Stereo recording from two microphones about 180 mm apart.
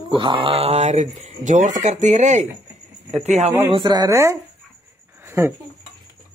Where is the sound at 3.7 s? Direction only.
25° right (ahead or behind).